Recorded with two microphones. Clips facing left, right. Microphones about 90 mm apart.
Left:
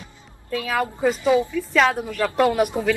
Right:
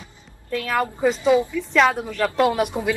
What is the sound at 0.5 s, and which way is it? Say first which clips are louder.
Speech: right 1 dB; 5° left (ahead or behind).